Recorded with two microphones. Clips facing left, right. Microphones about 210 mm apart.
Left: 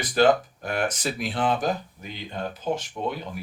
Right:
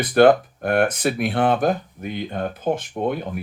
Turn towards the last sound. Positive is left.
turn(degrees=-55)  # may be behind; listen again after turning